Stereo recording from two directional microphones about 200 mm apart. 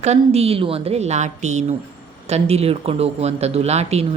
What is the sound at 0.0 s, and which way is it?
Speech, 35° right (ahead or behind).